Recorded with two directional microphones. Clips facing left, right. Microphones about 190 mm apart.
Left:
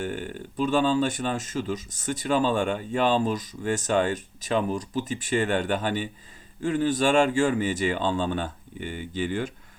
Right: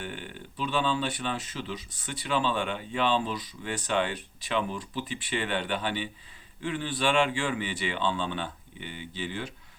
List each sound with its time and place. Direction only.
0.0 s speech: 45° left (ahead or behind)